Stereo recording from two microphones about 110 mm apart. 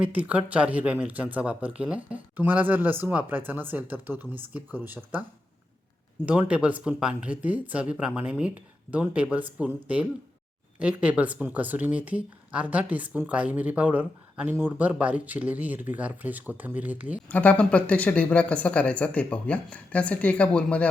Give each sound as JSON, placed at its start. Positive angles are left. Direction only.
{"t": 0.0, "sound": "speech", "side_deg": -15}
{"t": 6.2, "sound": "speech", "side_deg": -10}
{"t": 17.2, "sound": "speech", "side_deg": 15}